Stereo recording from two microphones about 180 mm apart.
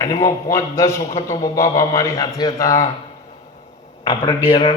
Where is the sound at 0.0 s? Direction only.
20° left (ahead or behind).